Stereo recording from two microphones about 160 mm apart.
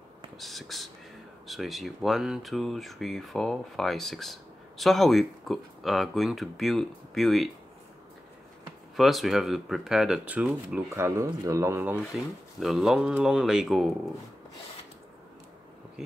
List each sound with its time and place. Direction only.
0.4 s speech: centre (ahead or behind)
8.9 s speech: centre (ahead or behind)
12.5 s speech: centre (ahead or behind)